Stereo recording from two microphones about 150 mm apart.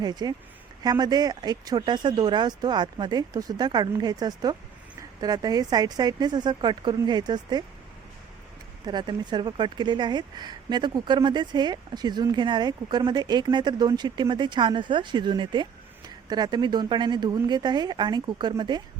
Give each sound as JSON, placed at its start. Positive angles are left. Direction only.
{"t": 0.0, "sound": "speech", "side_deg": -30}
{"t": 8.9, "sound": "speech", "side_deg": -30}